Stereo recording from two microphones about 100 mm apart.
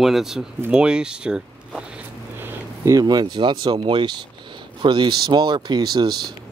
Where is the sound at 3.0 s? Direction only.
45° right (ahead or behind).